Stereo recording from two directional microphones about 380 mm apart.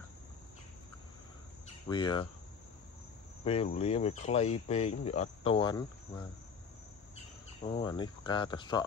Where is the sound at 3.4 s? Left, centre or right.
Centre.